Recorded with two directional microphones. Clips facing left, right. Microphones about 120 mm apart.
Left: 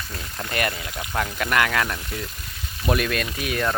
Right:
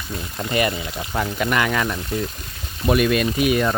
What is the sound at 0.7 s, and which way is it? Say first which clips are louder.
Speech: right 5 dB; 20° right (ahead or behind).